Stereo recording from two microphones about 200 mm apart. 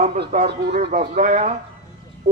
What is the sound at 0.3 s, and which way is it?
Speech, 40° right (ahead or behind).